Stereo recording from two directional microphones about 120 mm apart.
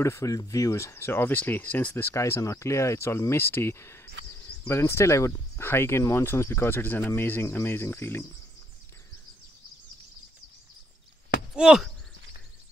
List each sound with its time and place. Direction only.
0.0 s speech: 25° left (ahead or behind)
11.5 s speech: 5° right (ahead or behind)